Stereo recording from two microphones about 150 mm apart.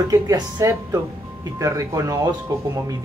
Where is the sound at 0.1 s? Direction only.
25° right (ahead or behind).